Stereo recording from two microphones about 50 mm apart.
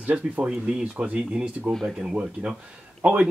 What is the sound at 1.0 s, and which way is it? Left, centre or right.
Speech, right.